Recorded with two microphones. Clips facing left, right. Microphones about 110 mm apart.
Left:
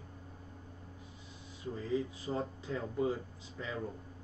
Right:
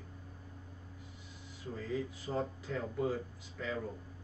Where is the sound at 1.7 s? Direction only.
20° left (ahead or behind).